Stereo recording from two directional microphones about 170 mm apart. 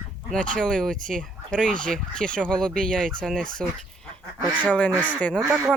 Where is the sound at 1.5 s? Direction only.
5° left (ahead or behind).